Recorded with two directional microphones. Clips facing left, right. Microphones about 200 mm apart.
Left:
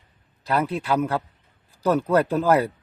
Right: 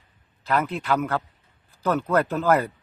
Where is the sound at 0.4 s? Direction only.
10° left (ahead or behind).